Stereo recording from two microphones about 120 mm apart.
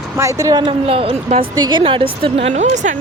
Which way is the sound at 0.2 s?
25° right (ahead or behind).